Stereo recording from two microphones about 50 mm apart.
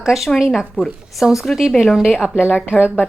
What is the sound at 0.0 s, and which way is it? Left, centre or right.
A woman's voice, centre.